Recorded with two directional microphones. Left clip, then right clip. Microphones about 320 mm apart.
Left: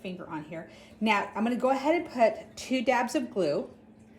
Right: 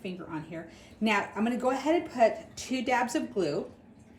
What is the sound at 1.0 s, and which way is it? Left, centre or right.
A woman's voice, centre.